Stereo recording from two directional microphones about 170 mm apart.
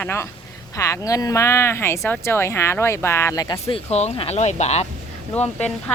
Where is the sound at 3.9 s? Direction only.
40° left (ahead or behind).